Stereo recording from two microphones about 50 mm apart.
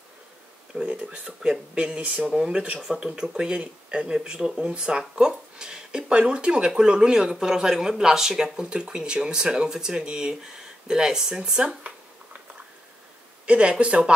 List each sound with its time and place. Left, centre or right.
0.7 s speech: right
13.5 s speech: right